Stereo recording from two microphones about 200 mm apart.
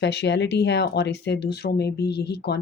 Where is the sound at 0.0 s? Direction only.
60° left (ahead or behind).